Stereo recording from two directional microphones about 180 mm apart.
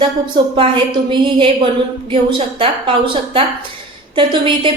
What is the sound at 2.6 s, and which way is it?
A woman's voice, 30° right (ahead or behind).